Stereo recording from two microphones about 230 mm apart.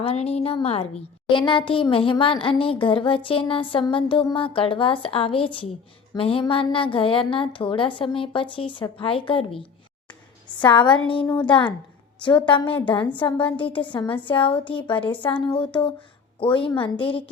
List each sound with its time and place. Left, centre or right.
0.0 s a woman's voice: left
10.6 s a woman's voice: centre
12.5 s a woman's voice: left